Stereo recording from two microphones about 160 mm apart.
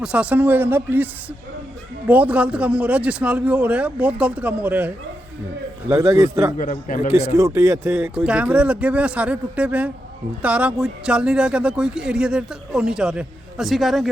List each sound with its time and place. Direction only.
0.0 s a man's voice: 5° right (ahead or behind)
5.9 s a man's voice: 20° right (ahead or behind)
6.6 s a man's voice: 50° left (ahead or behind)
7.3 s a man's voice: 20° right (ahead or behind); by 14.1 s centre (ahead or behind)